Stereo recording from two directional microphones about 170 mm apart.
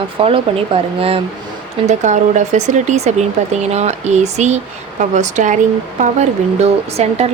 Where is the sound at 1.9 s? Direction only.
45° right (ahead or behind).